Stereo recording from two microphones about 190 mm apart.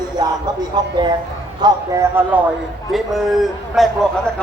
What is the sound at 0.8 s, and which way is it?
Speech, 20° right (ahead or behind).